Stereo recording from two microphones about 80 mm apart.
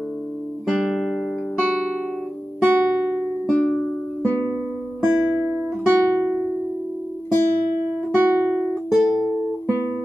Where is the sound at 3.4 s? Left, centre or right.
Centre.